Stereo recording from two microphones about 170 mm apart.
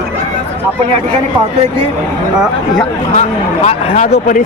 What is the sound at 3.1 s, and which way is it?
A man's voice, 45° left (ahead or behind).